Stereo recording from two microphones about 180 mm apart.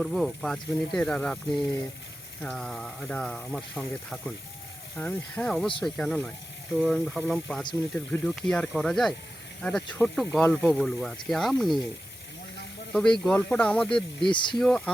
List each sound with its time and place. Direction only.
0.0 s speech: centre (ahead or behind)
12.9 s speech: 5° left (ahead or behind)
14.2 s speech: 25° left (ahead or behind)
14.6 s speech: 5° left (ahead or behind)